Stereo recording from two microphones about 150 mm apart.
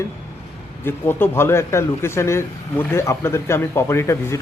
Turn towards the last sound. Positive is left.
turn(degrees=20)  # may be behind; listen again after turning